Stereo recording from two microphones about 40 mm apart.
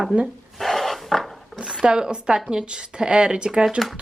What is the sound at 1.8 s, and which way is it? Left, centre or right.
Speech, right.